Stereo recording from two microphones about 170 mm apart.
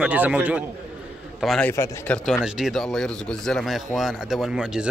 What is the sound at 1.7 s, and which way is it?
Speech, 15° left (ahead or behind).